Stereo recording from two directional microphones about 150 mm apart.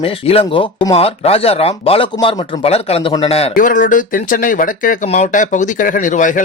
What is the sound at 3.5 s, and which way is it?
Speech, 60° left (ahead or behind).